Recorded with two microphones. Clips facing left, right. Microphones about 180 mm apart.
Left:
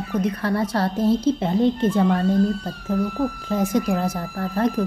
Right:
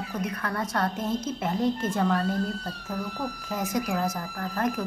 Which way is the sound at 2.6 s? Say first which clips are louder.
Left 9 dB; 50° left (ahead or behind).